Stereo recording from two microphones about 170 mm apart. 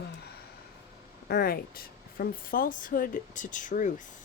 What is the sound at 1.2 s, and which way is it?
Speech, 65° left (ahead or behind).